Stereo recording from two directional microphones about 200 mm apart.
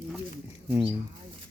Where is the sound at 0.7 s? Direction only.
10° right (ahead or behind).